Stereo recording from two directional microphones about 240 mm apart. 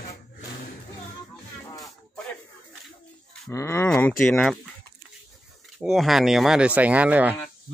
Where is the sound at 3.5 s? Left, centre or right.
Centre.